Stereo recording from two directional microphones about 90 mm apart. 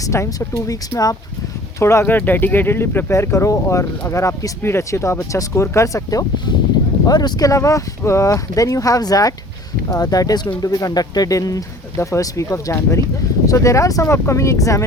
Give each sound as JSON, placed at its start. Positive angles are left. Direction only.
{"t": 0.0, "sound": "speech", "side_deg": 35}
{"t": 1.8, "sound": "speech", "side_deg": 30}